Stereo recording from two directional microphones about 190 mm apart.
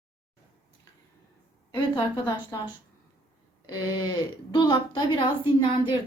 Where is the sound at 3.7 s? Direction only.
20° left (ahead or behind).